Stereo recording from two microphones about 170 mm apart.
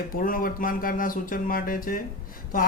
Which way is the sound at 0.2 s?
55° left (ahead or behind).